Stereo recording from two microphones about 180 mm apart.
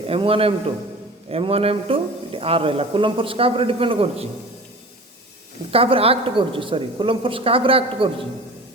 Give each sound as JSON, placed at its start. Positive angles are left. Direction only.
{"t": 0.1, "sound": "speech", "side_deg": -30}
{"t": 5.7, "sound": "a woman's voice", "side_deg": -30}